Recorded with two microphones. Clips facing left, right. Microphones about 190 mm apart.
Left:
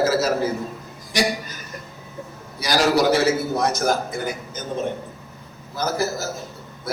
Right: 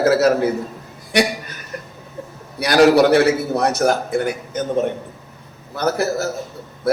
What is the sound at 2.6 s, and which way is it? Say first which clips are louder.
A man's voice: right 7 dB; 60° right (ahead or behind).